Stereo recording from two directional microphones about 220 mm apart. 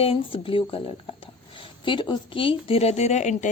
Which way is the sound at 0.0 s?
25° left (ahead or behind).